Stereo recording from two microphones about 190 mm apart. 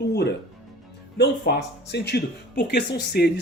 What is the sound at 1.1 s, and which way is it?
Speech, 60° left (ahead or behind).